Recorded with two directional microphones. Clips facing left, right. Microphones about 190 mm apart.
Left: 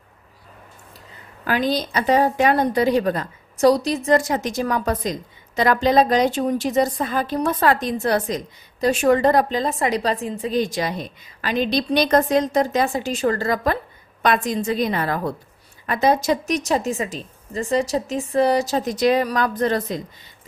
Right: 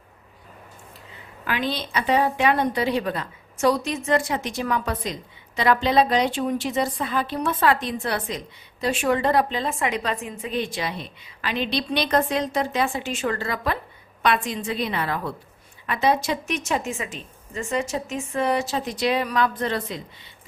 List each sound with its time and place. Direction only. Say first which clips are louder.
1.4 s a woman's voice: left 6 dB; 40° left (ahead or behind)